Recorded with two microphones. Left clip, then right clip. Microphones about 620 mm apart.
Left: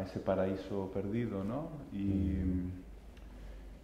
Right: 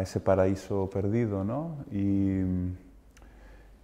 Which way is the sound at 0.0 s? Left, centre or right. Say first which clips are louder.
Right 9 dB; right.